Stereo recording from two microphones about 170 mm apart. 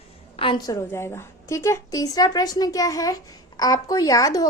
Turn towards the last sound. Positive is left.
turn(degrees=20)  # may be behind; listen again after turning